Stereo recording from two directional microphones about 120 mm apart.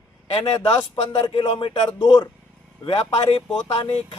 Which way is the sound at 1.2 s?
45° left (ahead or behind).